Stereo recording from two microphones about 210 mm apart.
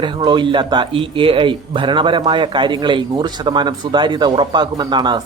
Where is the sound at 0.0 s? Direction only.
20° right (ahead or behind).